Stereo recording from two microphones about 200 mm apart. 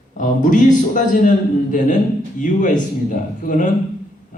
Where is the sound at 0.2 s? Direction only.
40° left (ahead or behind).